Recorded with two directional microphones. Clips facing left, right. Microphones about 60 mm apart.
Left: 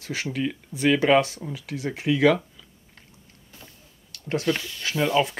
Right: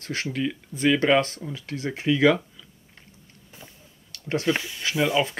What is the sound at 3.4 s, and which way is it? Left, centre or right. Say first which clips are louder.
Vehicle: right 2 dB; centre.